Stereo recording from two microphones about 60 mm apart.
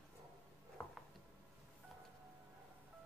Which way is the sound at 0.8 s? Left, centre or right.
Left.